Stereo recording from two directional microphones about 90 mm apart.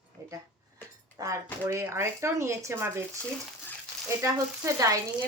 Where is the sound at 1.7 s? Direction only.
30° right (ahead or behind).